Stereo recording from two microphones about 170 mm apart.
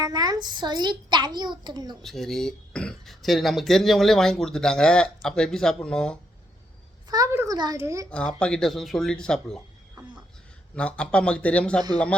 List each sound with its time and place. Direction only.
0.0 s a child's voice: 25° right (ahead or behind)
2.0 s speech: centre (ahead or behind)
7.1 s a child's voice: 20° right (ahead or behind)
8.1 s speech: 5° left (ahead or behind)
10.8 s speech: 5° left (ahead or behind)